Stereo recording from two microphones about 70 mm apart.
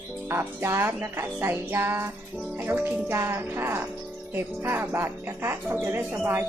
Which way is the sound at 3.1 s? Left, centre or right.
Right.